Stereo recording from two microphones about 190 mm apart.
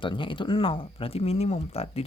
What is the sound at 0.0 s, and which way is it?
Speech, 25° left (ahead or behind).